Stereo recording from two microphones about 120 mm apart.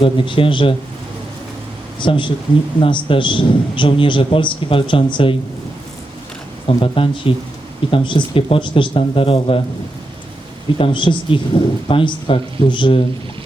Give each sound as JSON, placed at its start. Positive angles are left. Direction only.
{"t": 0.0, "sound": "speech", "side_deg": 45}
{"t": 2.0, "sound": "speech", "side_deg": 45}
{"t": 6.7, "sound": "speech", "side_deg": 45}
{"t": 10.8, "sound": "speech", "side_deg": 45}